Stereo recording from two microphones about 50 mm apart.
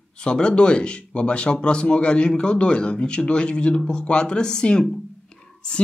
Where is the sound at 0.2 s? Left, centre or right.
Centre.